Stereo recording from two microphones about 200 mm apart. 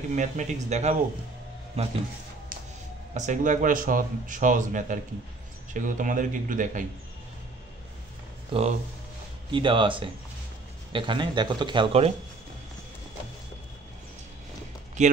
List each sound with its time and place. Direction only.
0.1 s speech: 35° right (ahead or behind)
2.5 s music: 45° right (ahead or behind)
3.2 s speech: 40° right (ahead or behind)
8.5 s speech: 30° right (ahead or behind)
15.0 s speech: 35° right (ahead or behind)